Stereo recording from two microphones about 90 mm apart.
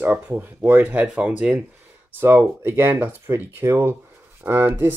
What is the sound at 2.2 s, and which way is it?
Speech, 25° right (ahead or behind).